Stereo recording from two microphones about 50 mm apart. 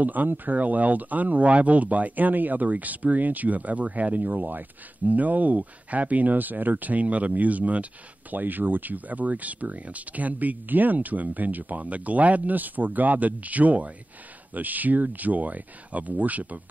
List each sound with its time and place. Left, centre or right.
0.0 s speech: right